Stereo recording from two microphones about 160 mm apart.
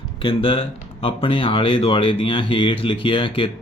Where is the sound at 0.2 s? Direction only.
30° left (ahead or behind).